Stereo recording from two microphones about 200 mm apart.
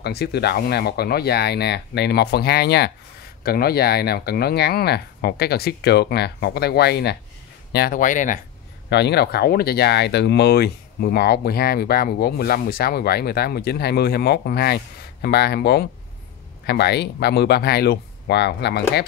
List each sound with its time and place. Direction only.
0.0 s speech: 55° left (ahead or behind)
8.8 s speech: 55° left (ahead or behind)